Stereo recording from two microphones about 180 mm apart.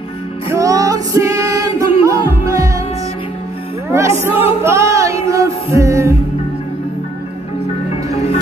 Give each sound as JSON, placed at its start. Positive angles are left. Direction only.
{"t": 0.5, "sound": "music", "side_deg": -20}
{"t": 3.9, "sound": "music", "side_deg": -15}